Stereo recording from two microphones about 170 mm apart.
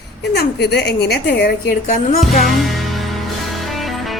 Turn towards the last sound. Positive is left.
turn(degrees=0)  # may be behind; listen again after turning